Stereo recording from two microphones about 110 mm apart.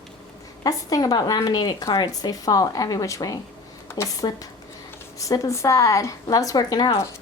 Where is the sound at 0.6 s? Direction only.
35° left (ahead or behind).